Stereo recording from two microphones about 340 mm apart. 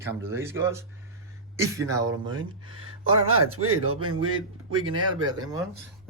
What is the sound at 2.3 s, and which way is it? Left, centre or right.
Speech, right.